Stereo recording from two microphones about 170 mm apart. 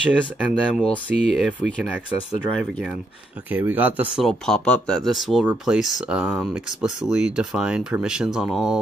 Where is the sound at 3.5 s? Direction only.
10° right (ahead or behind).